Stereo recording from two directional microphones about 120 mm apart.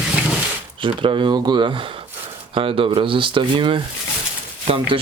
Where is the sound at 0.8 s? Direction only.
45° right (ahead or behind).